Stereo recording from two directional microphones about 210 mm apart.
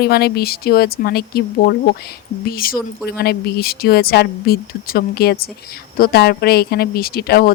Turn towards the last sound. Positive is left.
turn(degrees=45)  # may be behind; listen again after turning